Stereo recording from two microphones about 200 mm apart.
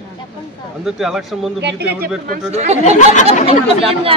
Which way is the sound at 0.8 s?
Centre (ahead or behind).